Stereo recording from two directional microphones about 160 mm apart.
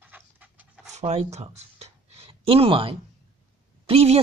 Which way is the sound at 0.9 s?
45° right (ahead or behind).